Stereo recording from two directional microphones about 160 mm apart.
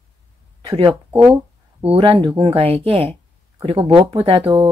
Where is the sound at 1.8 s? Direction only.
35° right (ahead or behind).